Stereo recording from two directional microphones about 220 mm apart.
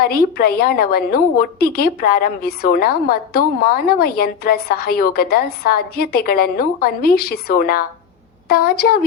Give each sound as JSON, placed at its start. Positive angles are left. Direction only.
{"t": 0.0, "sound": "a woman's voice", "side_deg": 45}